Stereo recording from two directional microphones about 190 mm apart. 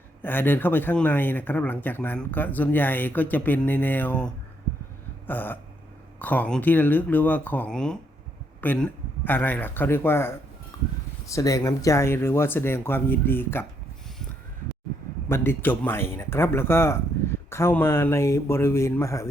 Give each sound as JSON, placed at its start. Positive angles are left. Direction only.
{"t": 0.2, "sound": "speech", "side_deg": 10}
{"t": 5.2, "sound": "burping", "side_deg": 10}
{"t": 6.1, "sound": "speech", "side_deg": 10}
{"t": 10.7, "sound": "a sound", "side_deg": 20}
{"t": 11.3, "sound": "speech", "side_deg": 15}
{"t": 15.3, "sound": "speech", "side_deg": 10}